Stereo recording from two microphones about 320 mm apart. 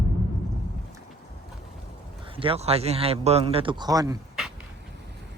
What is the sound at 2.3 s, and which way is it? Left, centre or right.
A man's voice, centre.